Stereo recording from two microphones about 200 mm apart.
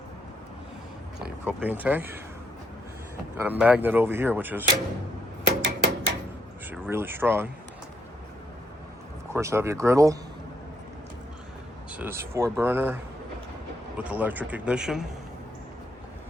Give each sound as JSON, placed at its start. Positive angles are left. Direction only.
{"t": 1.2, "sound": "speech", "side_deg": -10}
{"t": 3.4, "sound": "speech", "side_deg": -10}
{"t": 5.6, "sound": "a sound", "side_deg": -65}
{"t": 6.8, "sound": "speech", "side_deg": -10}
{"t": 9.3, "sound": "speech", "side_deg": -15}
{"t": 11.9, "sound": "speech", "side_deg": -10}